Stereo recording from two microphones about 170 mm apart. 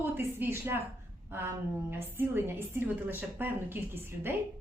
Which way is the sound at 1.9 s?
15° right (ahead or behind).